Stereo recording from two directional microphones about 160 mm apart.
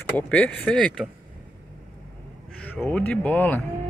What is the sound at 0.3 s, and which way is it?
Speech, 10° left (ahead or behind).